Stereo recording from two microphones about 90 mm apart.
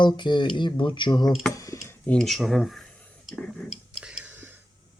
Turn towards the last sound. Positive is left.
turn(degrees=-10)  # may be behind; listen again after turning